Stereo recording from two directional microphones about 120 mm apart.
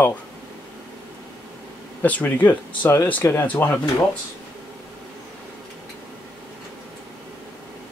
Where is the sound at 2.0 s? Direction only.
15° left (ahead or behind).